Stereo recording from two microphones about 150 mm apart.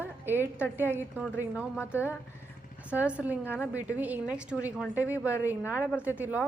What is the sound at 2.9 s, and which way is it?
A woman's voice, 10° right (ahead or behind).